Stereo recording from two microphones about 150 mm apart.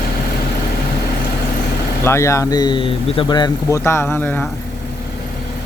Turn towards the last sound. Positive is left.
turn(degrees=30)  # may be behind; listen again after turning